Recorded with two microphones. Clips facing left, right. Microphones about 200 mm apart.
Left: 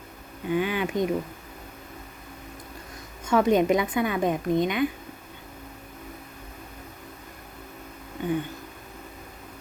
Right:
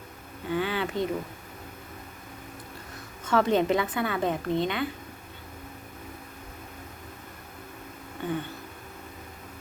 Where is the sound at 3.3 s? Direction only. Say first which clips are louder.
Left 3 dB; 15° left (ahead or behind).